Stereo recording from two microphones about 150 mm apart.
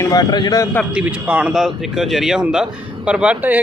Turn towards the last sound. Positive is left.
turn(degrees=-10)  # may be behind; listen again after turning